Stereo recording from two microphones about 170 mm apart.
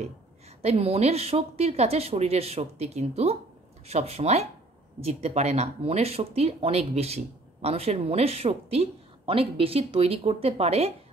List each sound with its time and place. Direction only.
0.6 s speech: 35° right (ahead or behind)